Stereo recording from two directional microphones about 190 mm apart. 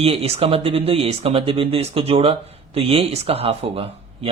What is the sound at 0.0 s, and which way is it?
Speech, 30° right (ahead or behind).